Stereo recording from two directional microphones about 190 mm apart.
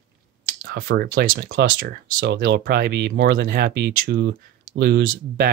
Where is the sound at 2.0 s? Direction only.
75° right (ahead or behind).